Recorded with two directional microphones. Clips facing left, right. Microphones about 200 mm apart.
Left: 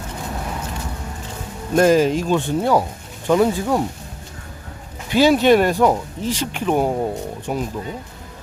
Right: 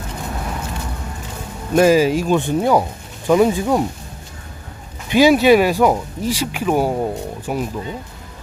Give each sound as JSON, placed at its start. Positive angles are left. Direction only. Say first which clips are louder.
{"t": 1.7, "sound": "speech", "louder": "right 1 dB", "side_deg": -5}
{"t": 5.0, "sound": "speech", "louder": "right 2 dB", "side_deg": -15}